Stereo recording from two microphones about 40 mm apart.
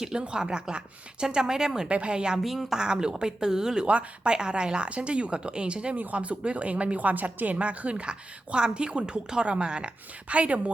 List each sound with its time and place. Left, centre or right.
0.0 s a woman's voice: centre
1.9 s a woman's voice: right
2.4 s speech: centre
2.7 s a woman's voice: centre
3.8 s a woman's voice: right
8.5 s a woman's voice: right